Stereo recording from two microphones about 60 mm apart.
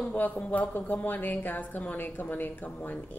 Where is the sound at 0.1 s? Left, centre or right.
Left.